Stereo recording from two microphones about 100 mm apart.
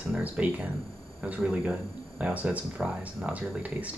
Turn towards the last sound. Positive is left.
turn(degrees=-15)  # may be behind; listen again after turning